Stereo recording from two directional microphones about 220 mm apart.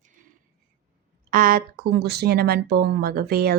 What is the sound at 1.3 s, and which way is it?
Speech, 40° right (ahead or behind).